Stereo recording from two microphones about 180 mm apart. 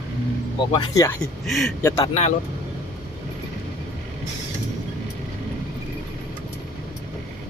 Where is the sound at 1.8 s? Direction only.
15° left (ahead or behind).